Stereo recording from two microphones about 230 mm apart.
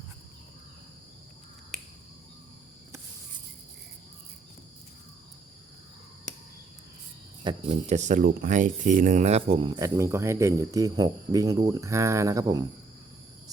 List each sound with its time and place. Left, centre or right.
7.4 s speech: right